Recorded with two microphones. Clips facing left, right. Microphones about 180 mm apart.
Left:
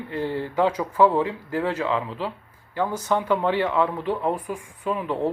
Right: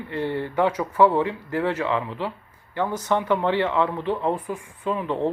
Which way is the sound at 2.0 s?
20° right (ahead or behind).